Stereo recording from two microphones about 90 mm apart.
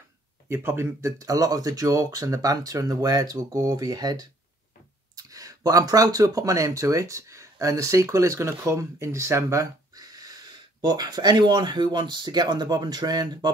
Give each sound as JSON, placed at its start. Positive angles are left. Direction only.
{"t": 0.5, "sound": "speech", "side_deg": -25}